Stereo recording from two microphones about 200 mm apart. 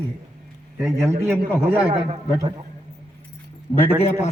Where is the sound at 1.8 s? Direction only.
30° right (ahead or behind).